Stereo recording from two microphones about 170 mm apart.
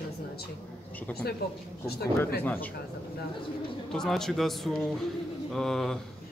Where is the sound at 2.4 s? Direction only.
10° left (ahead or behind).